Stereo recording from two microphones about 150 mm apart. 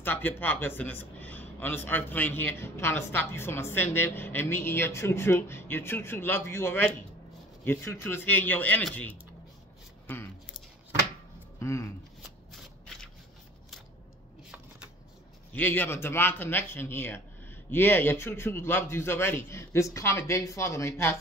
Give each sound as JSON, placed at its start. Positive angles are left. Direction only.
{"t": 0.0, "sound": "a man's voice", "side_deg": 15}
{"t": 11.6, "sound": "shuffling cards", "side_deg": 15}
{"t": 15.5, "sound": "a man's voice", "side_deg": 10}